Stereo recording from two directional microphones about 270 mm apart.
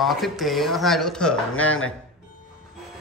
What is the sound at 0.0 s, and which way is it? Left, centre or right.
Speech, centre.